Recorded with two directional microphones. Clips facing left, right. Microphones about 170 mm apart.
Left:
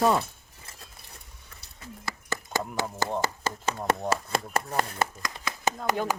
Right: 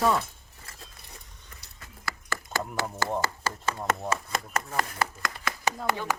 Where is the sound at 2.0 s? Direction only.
20° left (ahead or behind).